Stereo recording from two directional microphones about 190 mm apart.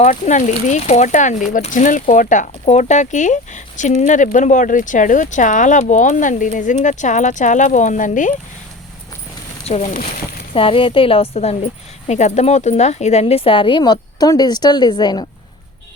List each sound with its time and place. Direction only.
0.0 s speech: 40° left (ahead or behind)
9.6 s speech: 35° left (ahead or behind)